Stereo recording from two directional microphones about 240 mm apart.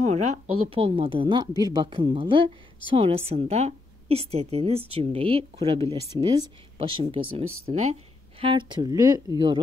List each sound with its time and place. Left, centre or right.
0.0 s a woman's voice: right